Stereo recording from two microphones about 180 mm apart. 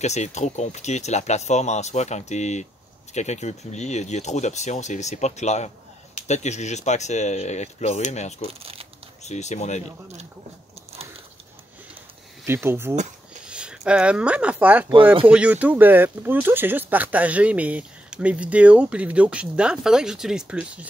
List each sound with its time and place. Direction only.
0.0 s speech: 40° left (ahead or behind)
8.5 s speech: 35° right (ahead or behind)
9.2 s speech: 40° left (ahead or behind)
12.4 s speech: 15° right (ahead or behind)